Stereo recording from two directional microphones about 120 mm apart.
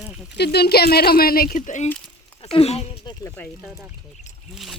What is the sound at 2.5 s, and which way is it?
Speech, 55° left (ahead or behind).